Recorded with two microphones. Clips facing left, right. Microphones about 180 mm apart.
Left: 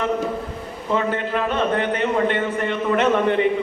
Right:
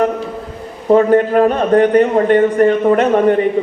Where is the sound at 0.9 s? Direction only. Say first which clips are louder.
Right 12 dB; 45° right (ahead or behind).